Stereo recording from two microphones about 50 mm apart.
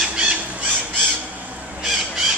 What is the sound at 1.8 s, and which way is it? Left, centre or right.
Squawk, centre.